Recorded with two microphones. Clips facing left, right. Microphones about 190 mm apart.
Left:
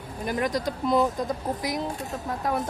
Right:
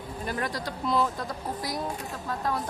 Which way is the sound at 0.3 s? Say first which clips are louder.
Left 6 dB; 20° left (ahead or behind).